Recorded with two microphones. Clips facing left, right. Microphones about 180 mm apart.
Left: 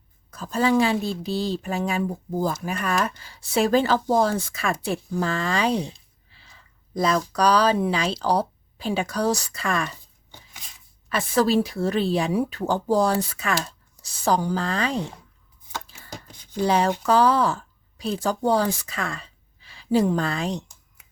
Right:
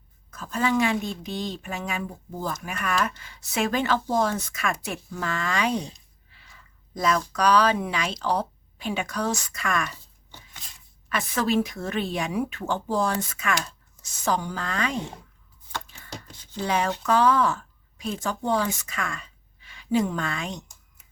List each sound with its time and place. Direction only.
0.3 s speech: 35° left (ahead or behind)
6.3 s a sound: 30° left (ahead or behind)
7.0 s speech: 35° left (ahead or behind)
11.1 s speech: 30° left (ahead or behind)
15.7 s chopping: 5° left (ahead or behind)
16.6 s a woman's voice: 35° left (ahead or behind)